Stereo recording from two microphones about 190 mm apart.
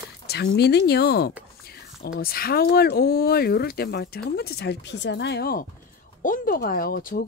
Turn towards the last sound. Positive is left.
turn(degrees=50)  # may be behind; listen again after turning